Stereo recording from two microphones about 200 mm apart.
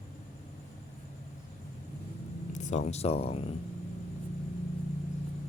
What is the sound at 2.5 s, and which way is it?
Speech, 35° left (ahead or behind).